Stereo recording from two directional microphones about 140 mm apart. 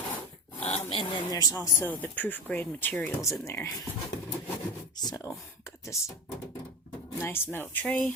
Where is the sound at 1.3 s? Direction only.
25° left (ahead or behind).